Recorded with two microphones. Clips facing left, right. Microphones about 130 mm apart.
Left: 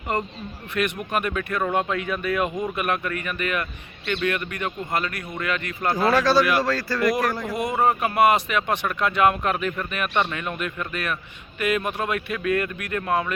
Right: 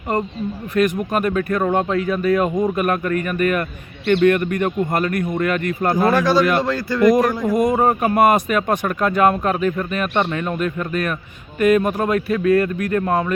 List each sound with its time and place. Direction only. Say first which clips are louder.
0.7 s speech: right 6 dB; 40° right (ahead or behind)
5.9 s a man's voice: right 2 dB; 15° right (ahead or behind)
7.5 s speech: right 5 dB; 45° right (ahead or behind)